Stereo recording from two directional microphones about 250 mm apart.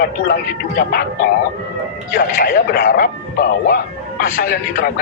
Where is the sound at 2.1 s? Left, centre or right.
Left.